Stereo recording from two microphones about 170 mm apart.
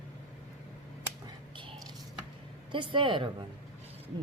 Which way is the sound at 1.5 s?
30° right (ahead or behind).